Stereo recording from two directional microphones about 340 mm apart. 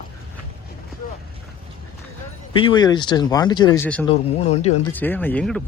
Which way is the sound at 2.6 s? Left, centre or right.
Centre.